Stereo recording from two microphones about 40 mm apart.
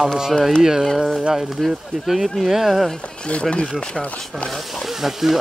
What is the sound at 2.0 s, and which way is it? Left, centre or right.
Speech, centre.